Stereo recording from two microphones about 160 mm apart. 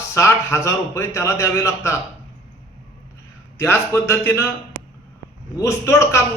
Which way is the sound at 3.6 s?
15° left (ahead or behind).